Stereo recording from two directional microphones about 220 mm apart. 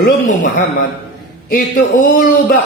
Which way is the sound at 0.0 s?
40° left (ahead or behind).